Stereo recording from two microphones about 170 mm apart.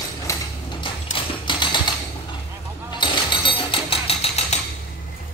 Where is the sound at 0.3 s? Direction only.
30° left (ahead or behind).